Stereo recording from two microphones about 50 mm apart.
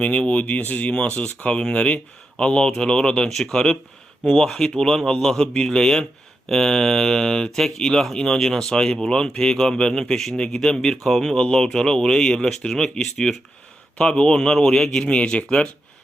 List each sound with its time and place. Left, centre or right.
0.0 s speech: left